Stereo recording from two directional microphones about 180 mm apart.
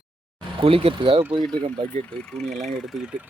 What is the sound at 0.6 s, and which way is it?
Speech, 30° right (ahead or behind).